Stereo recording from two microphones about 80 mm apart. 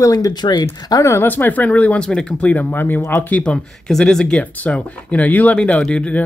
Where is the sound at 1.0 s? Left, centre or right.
Left.